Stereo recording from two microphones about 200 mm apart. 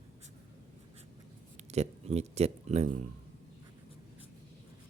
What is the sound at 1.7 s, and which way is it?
Speech, 35° right (ahead or behind).